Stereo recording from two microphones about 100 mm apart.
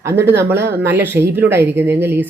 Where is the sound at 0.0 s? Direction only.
25° right (ahead or behind).